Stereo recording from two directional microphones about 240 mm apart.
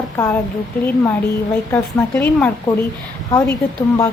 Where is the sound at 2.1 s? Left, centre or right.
Centre.